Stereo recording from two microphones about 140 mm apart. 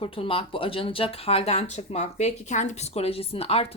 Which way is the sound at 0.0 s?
40° left (ahead or behind).